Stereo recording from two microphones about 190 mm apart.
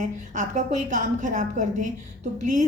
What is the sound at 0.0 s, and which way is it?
A woman's voice, 40° right (ahead or behind).